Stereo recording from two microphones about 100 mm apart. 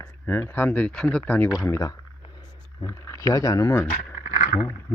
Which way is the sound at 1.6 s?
35° left (ahead or behind).